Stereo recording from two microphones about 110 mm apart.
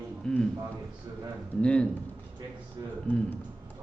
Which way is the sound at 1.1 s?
40° right (ahead or behind).